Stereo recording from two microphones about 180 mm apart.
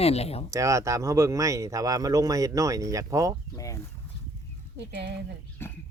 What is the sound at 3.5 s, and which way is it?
Speech, 20° left (ahead or behind).